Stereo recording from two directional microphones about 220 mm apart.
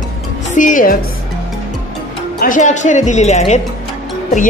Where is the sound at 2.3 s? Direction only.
35° left (ahead or behind).